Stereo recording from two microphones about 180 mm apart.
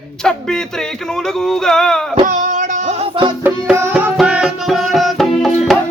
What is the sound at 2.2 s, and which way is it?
Music, 45° right (ahead or behind).